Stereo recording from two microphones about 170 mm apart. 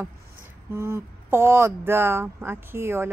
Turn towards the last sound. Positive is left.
turn(degrees=-15)  # may be behind; listen again after turning